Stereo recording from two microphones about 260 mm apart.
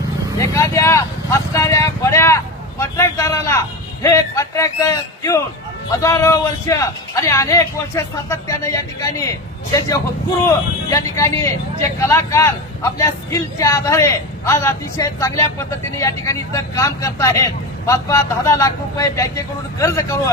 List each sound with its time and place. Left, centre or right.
0.3 s vehicle: centre
4.0 s speech: centre
10.4 s speech: centre